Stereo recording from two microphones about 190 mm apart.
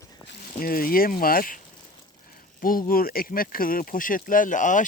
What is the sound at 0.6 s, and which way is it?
Speech, 50° left (ahead or behind).